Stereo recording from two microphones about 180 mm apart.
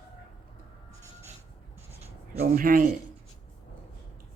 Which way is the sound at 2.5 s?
50° right (ahead or behind).